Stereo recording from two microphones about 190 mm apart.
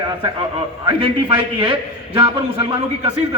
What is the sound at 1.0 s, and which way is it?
A man's voice, 25° right (ahead or behind).